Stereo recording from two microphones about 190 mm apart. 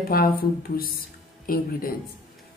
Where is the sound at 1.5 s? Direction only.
50° left (ahead or behind).